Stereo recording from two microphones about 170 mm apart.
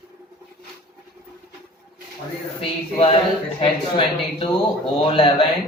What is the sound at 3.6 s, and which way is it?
Speech, 30° left (ahead or behind).